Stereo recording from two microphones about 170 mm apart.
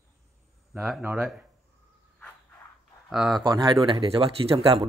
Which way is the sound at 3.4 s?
25° right (ahead or behind).